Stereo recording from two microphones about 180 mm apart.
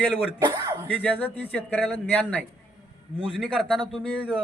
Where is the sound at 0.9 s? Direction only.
10° left (ahead or behind).